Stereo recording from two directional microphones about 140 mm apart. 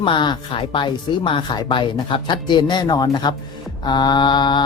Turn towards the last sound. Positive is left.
turn(degrees=30)  # may be behind; listen again after turning